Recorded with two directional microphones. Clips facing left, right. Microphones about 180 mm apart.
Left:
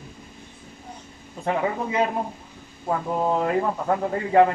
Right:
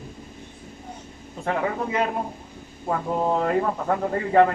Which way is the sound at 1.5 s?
5° left (ahead or behind).